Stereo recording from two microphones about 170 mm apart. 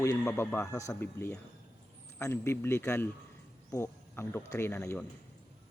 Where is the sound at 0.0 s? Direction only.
15° left (ahead or behind).